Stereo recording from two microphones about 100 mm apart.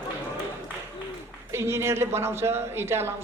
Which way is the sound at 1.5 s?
25° right (ahead or behind).